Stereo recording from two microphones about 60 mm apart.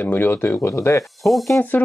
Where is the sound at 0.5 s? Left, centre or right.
Left.